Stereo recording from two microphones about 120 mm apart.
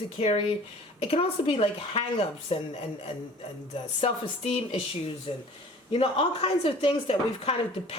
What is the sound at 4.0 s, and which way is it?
A woman's voice, 55° left (ahead or behind).